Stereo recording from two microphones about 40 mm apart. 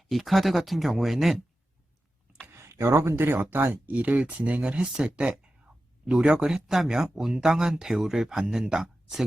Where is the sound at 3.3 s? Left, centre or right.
Right.